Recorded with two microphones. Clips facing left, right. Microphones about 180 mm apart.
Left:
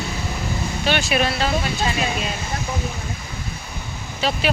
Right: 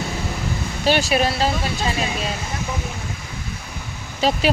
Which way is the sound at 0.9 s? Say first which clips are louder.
Right 3 dB; 35° right (ahead or behind).